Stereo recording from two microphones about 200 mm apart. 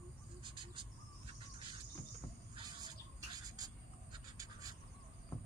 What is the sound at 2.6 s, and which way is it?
Bird, 20° right (ahead or behind).